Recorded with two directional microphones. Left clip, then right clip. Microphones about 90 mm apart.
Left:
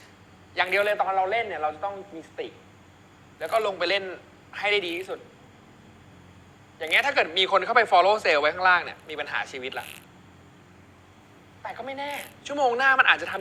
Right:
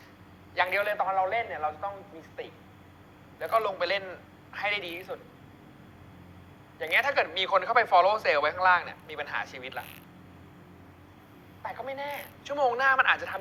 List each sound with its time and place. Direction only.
0.5 s speech: 35° right (ahead or behind)
6.7 s speech: 35° right (ahead or behind)
11.6 s speech: 35° right (ahead or behind)